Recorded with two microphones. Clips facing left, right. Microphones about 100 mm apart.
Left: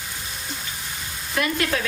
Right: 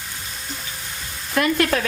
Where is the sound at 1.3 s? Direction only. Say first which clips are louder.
Right 5 dB; 50° right (ahead or behind).